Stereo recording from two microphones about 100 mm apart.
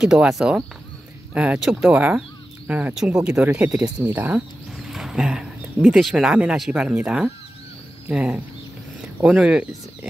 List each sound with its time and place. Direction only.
0.0 s speech: 5° right (ahead or behind)
4.7 s a sound: 5° right (ahead or behind)
5.9 s speech: 5° right (ahead or behind)